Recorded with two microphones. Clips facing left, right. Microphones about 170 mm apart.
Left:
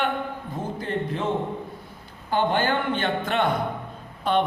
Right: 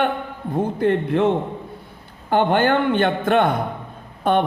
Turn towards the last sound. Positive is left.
turn(degrees=-55)  # may be behind; listen again after turning